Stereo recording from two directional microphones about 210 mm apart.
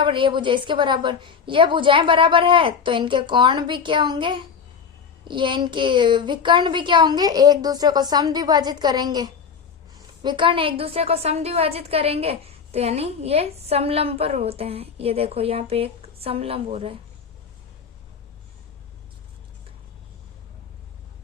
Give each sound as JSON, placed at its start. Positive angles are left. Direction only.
{"t": 0.0, "sound": "a woman's voice", "side_deg": -25}